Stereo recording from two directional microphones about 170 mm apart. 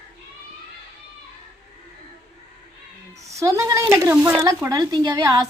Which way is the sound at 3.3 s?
20° right (ahead or behind).